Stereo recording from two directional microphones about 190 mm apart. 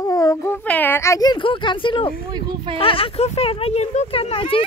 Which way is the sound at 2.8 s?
30° left (ahead or behind).